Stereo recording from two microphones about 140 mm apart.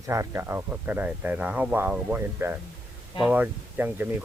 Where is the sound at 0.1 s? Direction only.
20° right (ahead or behind).